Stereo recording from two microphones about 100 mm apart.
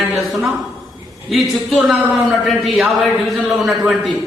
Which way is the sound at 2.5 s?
Centre (ahead or behind).